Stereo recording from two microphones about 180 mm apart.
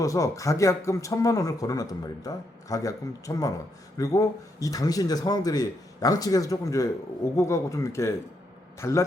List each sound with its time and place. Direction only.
0.0 s speech: 15° left (ahead or behind)